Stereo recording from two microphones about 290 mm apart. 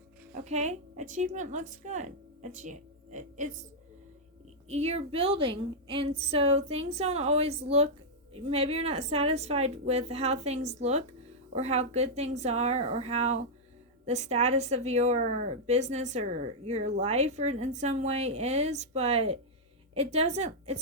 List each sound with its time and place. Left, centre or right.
0.3 s speech: right
4.7 s speech: right